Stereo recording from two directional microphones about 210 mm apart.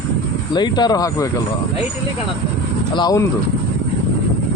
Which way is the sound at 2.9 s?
20° left (ahead or behind).